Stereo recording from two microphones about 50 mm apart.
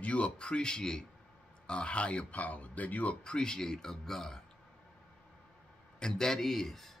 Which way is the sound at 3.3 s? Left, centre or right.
Centre.